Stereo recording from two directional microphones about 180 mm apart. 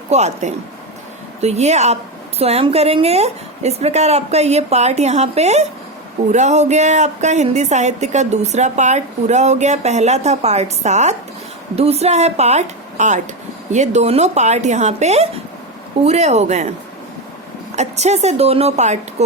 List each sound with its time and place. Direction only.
0.1 s a woman's voice: 40° right (ahead or behind)
17.7 s a woman's voice: 40° right (ahead or behind)